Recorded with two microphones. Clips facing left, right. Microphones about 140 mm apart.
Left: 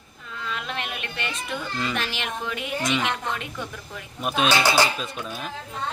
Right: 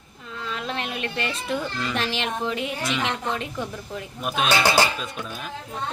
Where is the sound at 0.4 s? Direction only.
35° right (ahead or behind).